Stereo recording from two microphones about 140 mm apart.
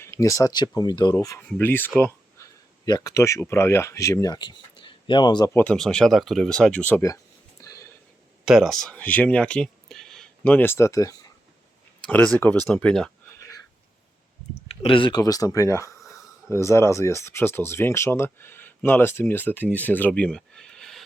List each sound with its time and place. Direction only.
0.0 s speech: 20° left (ahead or behind)
1.4 s speech: 10° left (ahead or behind)
2.0 s a sound: 15° left (ahead or behind)
2.8 s speech: 25° left (ahead or behind)
5.5 s speech: 5° left (ahead or behind)
7.6 s a sound: 25° left (ahead or behind)
8.4 s speech: centre (ahead or behind); by 11.3 s 25° left (ahead or behind)
12.0 s speech: 5° left (ahead or behind)
14.7 s speech: 40° left (ahead or behind); by 16.0 s 20° left (ahead or behind)
16.0 s a sound: centre (ahead or behind)
16.5 s speech: 20° left (ahead or behind); by 21.0 s 5° left (ahead or behind)